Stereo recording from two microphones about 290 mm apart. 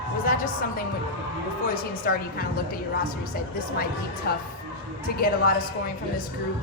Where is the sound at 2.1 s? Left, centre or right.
Left.